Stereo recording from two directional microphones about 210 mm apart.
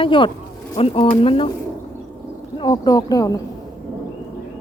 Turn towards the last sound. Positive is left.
turn(degrees=15)  # may be behind; listen again after turning